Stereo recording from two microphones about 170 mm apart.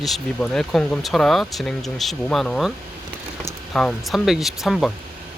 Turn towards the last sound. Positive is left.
turn(degrees=0)  # may be behind; listen again after turning